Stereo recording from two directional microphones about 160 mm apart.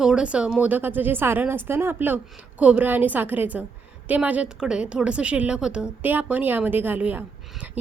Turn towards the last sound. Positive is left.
turn(degrees=-10)  # may be behind; listen again after turning